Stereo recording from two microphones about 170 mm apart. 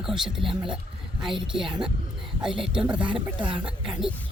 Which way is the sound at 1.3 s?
30° right (ahead or behind).